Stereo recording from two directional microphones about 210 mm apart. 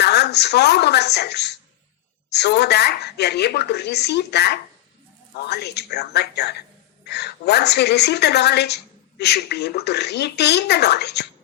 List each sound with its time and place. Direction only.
0.0 s a woman's voice: 50° left (ahead or behind)